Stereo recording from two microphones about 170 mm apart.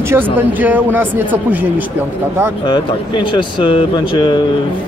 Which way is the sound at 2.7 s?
30° left (ahead or behind).